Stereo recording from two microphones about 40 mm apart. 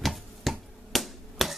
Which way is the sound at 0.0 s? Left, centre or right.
Centre.